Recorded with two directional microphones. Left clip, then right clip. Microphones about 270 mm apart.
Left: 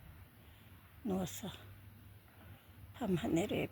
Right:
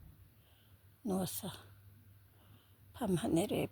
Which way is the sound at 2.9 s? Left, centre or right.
Right.